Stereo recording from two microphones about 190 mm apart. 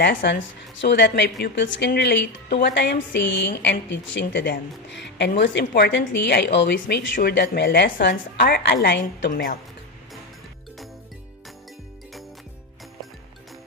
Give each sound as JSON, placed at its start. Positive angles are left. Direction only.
{"t": 0.0, "sound": "a woman's voice", "side_deg": 60}
{"t": 7.2, "sound": "a woman's voice", "side_deg": 60}
{"t": 9.3, "sound": "speech", "side_deg": 45}